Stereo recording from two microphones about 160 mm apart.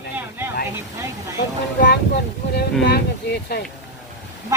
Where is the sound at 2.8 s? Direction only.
90° left.